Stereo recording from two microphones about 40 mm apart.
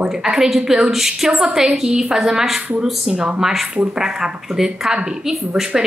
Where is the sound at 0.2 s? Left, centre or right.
Centre.